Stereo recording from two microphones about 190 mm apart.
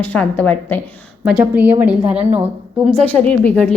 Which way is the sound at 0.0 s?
10° left (ahead or behind).